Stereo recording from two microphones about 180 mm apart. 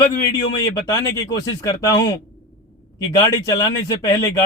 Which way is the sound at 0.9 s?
20° left (ahead or behind).